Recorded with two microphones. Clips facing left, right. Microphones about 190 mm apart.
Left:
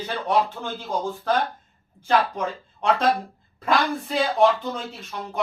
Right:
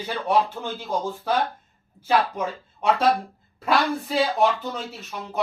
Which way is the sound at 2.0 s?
5° right (ahead or behind).